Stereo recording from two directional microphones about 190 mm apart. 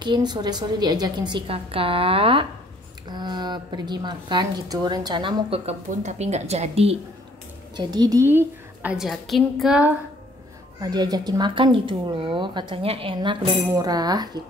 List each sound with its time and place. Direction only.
0.0 s a woman's voice: 25° right (ahead or behind)
7.7 s a woman's voice: 20° right (ahead or behind); by 9.9 s 5° right (ahead or behind)
10.8 s a woman's voice: 20° right (ahead or behind)